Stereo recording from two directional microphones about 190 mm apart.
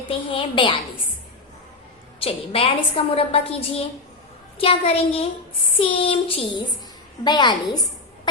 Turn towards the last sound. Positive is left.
turn(degrees=20)  # may be behind; listen again after turning